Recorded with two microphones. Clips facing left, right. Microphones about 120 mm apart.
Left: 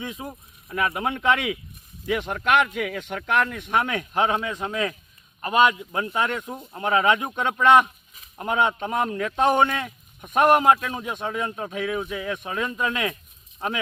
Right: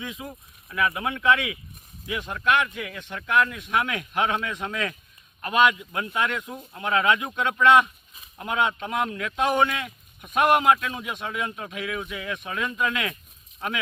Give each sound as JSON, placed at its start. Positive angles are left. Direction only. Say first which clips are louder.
{"t": 0.0, "sound": "speech", "louder": "left 2 dB", "side_deg": 35}
{"t": 2.0, "sound": "speech", "louder": "left 2 dB", "side_deg": 65}
{"t": 3.5, "sound": "speech", "louder": "left 2 dB", "side_deg": 45}